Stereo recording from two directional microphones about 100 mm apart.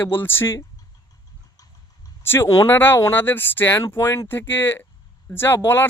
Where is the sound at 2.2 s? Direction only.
25° left (ahead or behind).